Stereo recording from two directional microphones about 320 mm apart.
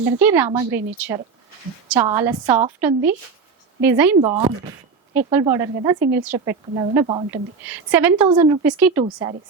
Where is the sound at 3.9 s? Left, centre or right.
Centre.